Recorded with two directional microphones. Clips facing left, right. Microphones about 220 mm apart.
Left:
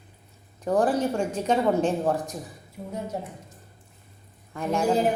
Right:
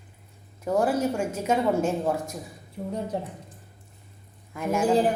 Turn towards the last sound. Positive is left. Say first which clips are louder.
# even
turn(degrees=-10)  # may be behind; listen again after turning